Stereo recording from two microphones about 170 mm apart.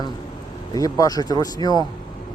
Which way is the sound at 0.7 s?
20° left (ahead or behind).